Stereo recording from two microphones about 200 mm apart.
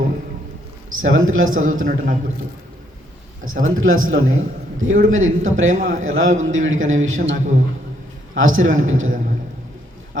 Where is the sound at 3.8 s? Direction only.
90° right.